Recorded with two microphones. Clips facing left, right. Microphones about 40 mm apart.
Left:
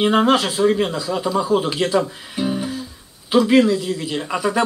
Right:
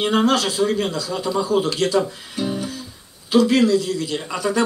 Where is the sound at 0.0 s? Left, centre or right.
Centre.